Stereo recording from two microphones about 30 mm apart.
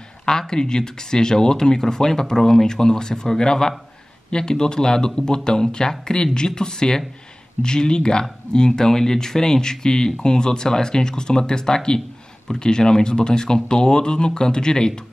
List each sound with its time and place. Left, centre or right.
0.2 s speech: left